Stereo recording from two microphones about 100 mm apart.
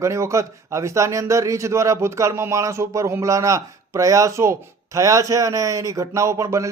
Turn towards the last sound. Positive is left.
turn(degrees=-30)  # may be behind; listen again after turning